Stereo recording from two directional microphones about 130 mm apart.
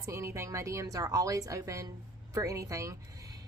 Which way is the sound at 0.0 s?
20° right (ahead or behind).